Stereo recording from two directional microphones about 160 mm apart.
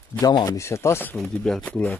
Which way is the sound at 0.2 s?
25° left (ahead or behind).